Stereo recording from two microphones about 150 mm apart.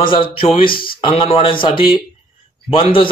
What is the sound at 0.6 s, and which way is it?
Speech, 75° left (ahead or behind).